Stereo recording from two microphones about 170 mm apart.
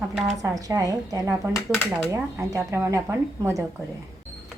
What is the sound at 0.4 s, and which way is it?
Speech, 20° right (ahead or behind).